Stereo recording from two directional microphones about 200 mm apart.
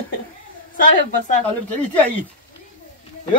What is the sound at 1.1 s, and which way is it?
Speech, 40° left (ahead or behind).